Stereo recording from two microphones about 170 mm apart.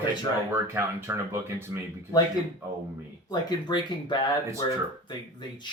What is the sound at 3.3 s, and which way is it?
Speech, 25° left (ahead or behind).